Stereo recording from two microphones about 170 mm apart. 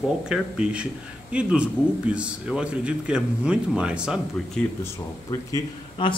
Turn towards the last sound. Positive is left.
turn(degrees=30)  # may be behind; listen again after turning